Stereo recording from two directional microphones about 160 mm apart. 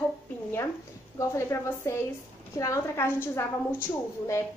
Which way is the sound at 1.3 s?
15° left (ahead or behind).